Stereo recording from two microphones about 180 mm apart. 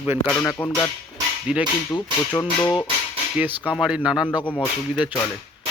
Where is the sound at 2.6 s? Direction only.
25° left (ahead or behind).